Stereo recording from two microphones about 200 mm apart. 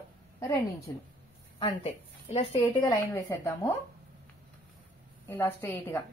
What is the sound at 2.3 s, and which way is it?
Speech, 25° left (ahead or behind).